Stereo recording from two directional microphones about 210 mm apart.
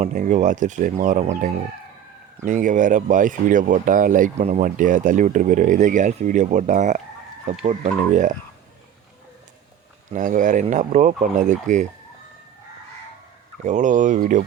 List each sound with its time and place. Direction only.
0.0 s speech: 35° right (ahead or behind)
10.1 s speech: 40° right (ahead or behind)
13.7 s speech: 35° right (ahead or behind)